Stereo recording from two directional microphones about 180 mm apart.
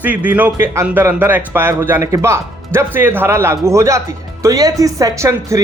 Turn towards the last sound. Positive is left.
turn(degrees=-15)  # may be behind; listen again after turning